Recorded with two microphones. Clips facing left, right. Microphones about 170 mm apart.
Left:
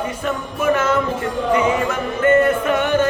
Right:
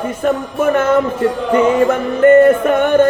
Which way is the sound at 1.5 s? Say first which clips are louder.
Right 6 dB; 45° right (ahead or behind).